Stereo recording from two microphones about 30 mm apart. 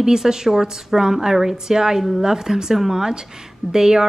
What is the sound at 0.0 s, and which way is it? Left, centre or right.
A woman's voice, right.